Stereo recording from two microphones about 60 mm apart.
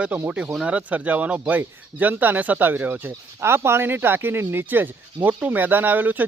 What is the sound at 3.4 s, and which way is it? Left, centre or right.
Speech, right.